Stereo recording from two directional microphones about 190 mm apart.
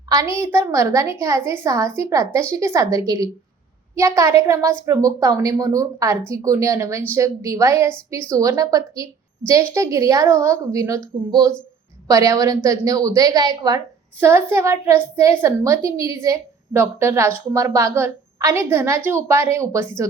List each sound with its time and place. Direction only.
0.3 s a woman's voice: 15° right (ahead or behind)